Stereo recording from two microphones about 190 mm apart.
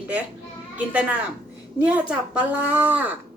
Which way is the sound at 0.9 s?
10° right (ahead or behind).